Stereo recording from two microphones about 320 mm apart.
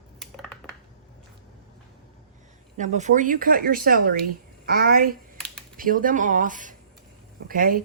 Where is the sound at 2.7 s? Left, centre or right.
Right.